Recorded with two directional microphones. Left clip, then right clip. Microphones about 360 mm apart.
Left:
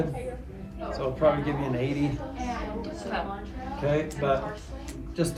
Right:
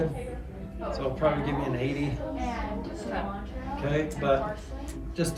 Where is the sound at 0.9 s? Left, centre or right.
Centre.